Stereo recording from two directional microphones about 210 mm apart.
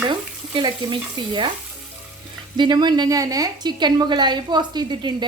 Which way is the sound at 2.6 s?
20° right (ahead or behind).